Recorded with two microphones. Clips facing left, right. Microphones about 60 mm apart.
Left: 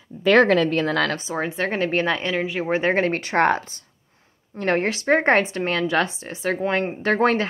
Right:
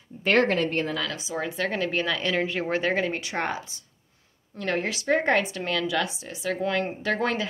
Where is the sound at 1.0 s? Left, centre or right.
Left.